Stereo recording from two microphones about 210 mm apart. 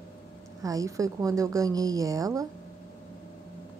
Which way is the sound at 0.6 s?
15° right (ahead or behind).